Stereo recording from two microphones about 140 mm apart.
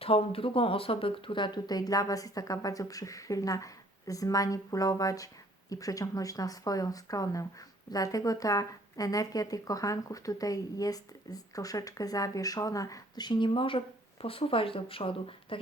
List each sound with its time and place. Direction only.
0.0 s a woman's voice: 40° left (ahead or behind)